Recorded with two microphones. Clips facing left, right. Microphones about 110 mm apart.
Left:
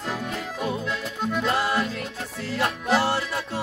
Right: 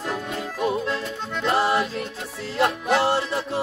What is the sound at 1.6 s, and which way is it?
Music, 30° right (ahead or behind).